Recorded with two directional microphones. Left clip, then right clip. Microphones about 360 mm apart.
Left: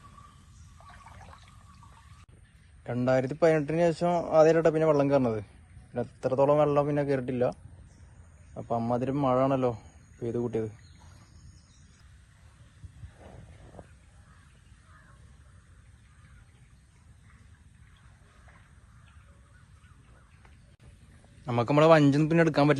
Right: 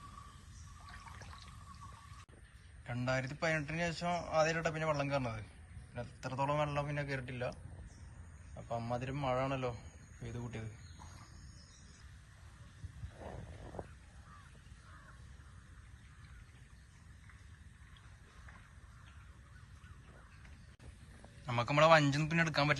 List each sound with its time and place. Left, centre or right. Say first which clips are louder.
0.9 s a sound: left 3 dB; centre
2.8 s a man's voice: left 11 dB; centre
8.8 s a man's voice: left 12 dB; centre
21.4 s a man's voice: left 7 dB; centre